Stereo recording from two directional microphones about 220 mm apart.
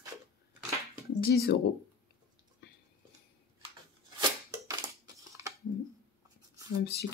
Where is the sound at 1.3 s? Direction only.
45° left (ahead or behind).